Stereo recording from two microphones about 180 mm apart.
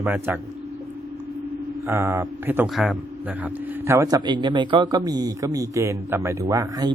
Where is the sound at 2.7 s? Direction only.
Centre (ahead or behind).